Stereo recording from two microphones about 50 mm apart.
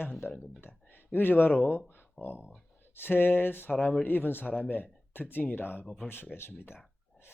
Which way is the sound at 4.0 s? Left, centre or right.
Left.